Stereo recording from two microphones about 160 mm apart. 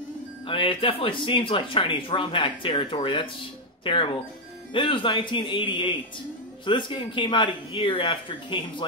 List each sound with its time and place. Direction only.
0.5 s speech: 30° left (ahead or behind)